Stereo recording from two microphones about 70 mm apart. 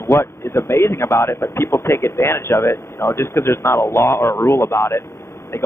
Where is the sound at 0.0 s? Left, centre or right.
Left.